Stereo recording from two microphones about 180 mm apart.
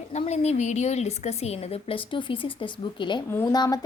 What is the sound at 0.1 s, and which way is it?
A woman's voice, 40° left (ahead or behind).